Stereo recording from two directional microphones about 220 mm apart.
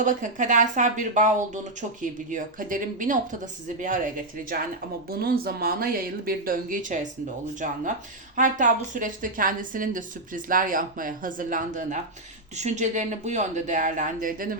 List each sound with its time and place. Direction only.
0.0 s a woman's voice: 35° right (ahead or behind)
5.0 s a woman's voice: 45° right (ahead or behind)